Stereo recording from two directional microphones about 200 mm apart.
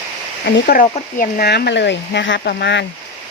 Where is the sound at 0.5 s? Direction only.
50° left (ahead or behind).